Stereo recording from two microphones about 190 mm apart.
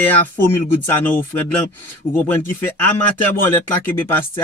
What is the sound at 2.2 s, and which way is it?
Speech, 10° left (ahead or behind).